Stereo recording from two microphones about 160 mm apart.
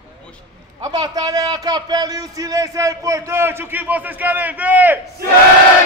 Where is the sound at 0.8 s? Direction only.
25° right (ahead or behind).